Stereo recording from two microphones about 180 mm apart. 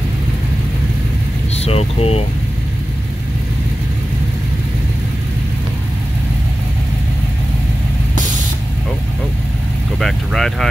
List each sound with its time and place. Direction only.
1.6 s speech: 35° left (ahead or behind)
9.9 s vehicle: centre (ahead or behind)